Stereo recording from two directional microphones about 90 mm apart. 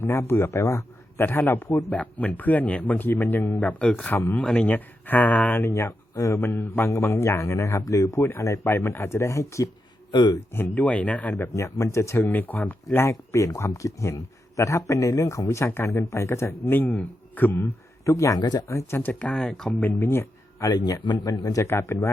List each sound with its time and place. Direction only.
0.0 s a man's voice: 25° left (ahead or behind)
5.6 s speech: 30° left (ahead or behind)
10.1 s speech: 55° left (ahead or behind)
10.5 s a man's voice: 25° left (ahead or behind)
12.3 s a man's voice: 20° left (ahead or behind)
18.0 s speech: 35° left (ahead or behind)
18.7 s a man's voice: 30° left (ahead or behind)
19.3 s speech: 10° left (ahead or behind)
19.8 s speech: 20° left (ahead or behind)
20.7 s speech: 45° left (ahead or behind)